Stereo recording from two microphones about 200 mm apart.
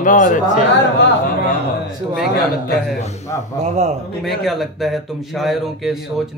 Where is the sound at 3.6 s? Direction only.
35° right (ahead or behind).